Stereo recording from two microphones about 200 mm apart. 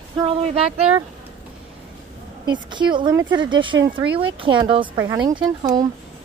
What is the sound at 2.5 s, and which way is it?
Speech, 25° right (ahead or behind).